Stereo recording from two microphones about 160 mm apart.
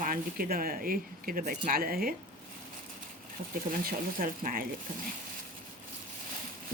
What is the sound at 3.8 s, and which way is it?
Speech, 65° right (ahead or behind).